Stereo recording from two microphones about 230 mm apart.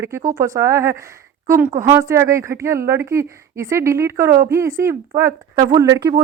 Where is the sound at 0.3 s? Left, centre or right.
Centre.